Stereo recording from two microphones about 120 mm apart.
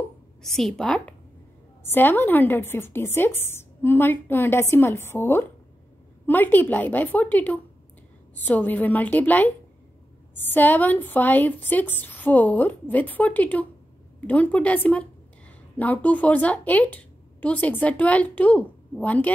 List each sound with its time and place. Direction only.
0.4 s a woman's voice: centre (ahead or behind)